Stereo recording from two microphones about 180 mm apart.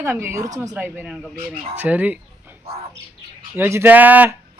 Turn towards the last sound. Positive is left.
turn(degrees=-10)  # may be behind; listen again after turning